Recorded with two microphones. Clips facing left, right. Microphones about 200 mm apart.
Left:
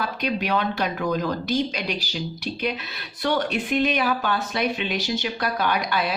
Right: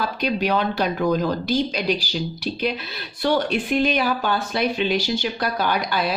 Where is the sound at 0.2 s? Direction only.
35° right (ahead or behind).